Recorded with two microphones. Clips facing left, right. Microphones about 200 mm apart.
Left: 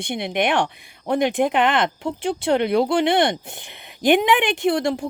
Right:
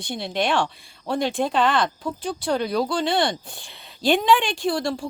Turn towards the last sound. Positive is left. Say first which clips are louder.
# left 4 dB
turn(degrees=20)  # may be behind; listen again after turning